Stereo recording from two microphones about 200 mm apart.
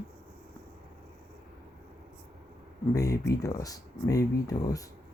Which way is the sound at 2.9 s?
15° left (ahead or behind).